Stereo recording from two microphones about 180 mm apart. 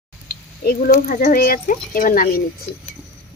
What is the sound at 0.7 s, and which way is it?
Speech, 50° left (ahead or behind).